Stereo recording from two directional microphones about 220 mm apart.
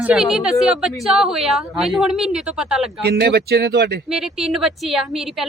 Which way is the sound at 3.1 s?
45° right (ahead or behind).